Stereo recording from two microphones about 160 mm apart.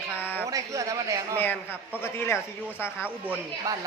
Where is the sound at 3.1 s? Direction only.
10° right (ahead or behind).